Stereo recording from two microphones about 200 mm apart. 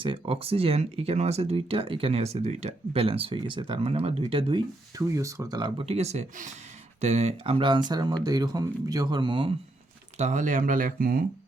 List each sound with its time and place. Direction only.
0.0 s speech: 25° right (ahead or behind)
10.2 s speech: 35° right (ahead or behind)